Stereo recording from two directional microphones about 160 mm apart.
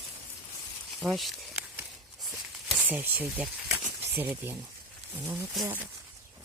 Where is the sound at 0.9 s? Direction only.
Centre (ahead or behind).